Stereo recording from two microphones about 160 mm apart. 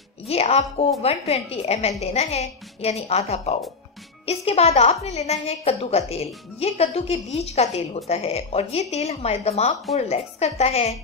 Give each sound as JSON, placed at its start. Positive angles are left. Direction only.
{"t": 0.3, "sound": "a woman's voice", "side_deg": 40}